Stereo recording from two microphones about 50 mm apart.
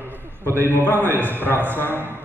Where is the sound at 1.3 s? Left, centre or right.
Left.